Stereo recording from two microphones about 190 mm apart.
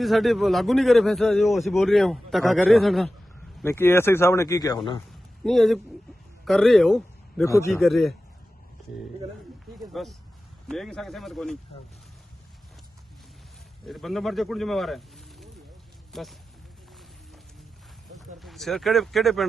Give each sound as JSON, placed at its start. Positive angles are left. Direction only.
{"t": 0.0, "sound": "a man's voice", "side_deg": 0}
{"t": 3.6, "sound": "speech", "side_deg": 10}
{"t": 5.4, "sound": "speech", "side_deg": 0}
{"t": 7.4, "sound": "speech", "side_deg": 15}
{"t": 7.7, "sound": "a man's voice", "side_deg": 0}
{"t": 9.7, "sound": "a man's voice", "side_deg": 0}
{"t": 13.8, "sound": "a man's voice", "side_deg": 0}
{"t": 18.3, "sound": "speech", "side_deg": 0}